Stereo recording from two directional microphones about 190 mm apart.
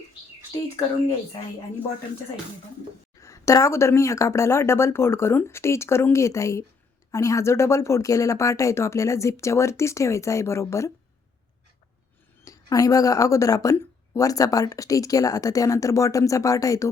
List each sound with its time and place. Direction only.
3.2 s speech: 15° left (ahead or behind)
12.5 s speech: 20° left (ahead or behind)